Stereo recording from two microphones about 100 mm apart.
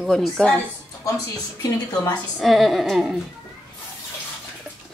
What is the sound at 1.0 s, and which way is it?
Speech, 35° left (ahead or behind).